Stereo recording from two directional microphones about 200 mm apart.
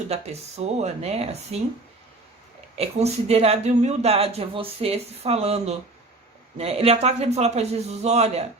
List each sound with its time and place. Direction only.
0.1 s speech: 30° right (ahead or behind)
2.7 s speech: 30° right (ahead or behind)